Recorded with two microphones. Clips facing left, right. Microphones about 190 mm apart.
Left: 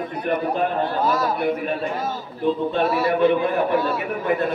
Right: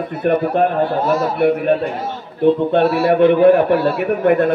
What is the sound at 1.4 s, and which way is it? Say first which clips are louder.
A man's voice: right 8 dB; 65° right (ahead or behind).